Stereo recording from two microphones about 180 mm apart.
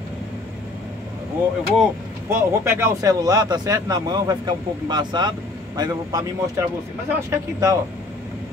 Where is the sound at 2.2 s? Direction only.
15° right (ahead or behind).